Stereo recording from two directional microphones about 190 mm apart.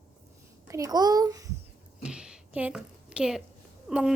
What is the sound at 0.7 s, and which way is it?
Speech, 20° right (ahead or behind).